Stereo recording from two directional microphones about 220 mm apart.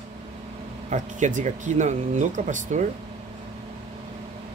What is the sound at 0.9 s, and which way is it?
Speech, 35° right (ahead or behind).